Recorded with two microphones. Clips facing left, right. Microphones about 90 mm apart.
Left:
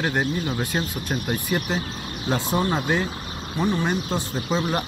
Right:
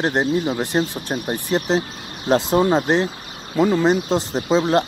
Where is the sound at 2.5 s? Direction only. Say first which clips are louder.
Right 6 dB; 40° right (ahead or behind).